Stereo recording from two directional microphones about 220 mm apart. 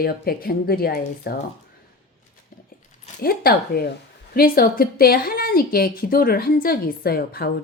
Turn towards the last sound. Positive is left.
turn(degrees=45)  # may be behind; listen again after turning